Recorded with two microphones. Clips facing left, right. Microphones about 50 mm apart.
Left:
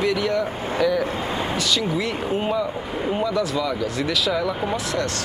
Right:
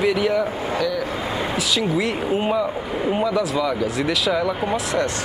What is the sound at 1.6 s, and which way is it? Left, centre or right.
Speech, centre.